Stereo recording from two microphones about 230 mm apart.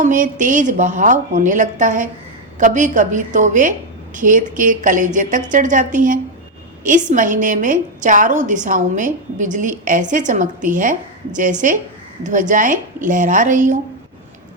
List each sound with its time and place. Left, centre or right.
0.0 s a woman's voice: right